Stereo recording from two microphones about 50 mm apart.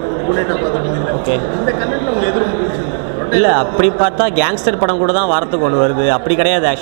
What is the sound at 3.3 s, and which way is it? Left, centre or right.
Speech, centre.